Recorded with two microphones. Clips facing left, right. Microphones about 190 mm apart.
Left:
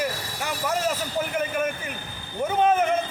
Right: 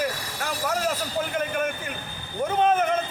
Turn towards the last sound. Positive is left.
turn(degrees=10)  # may be behind; listen again after turning